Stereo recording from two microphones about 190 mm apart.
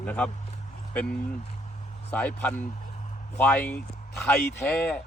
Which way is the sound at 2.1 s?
10° left (ahead or behind).